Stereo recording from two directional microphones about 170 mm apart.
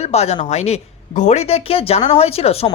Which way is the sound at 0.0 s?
40° left (ahead or behind).